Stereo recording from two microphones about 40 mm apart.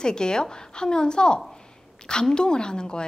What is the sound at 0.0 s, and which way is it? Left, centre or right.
A woman's voice, centre.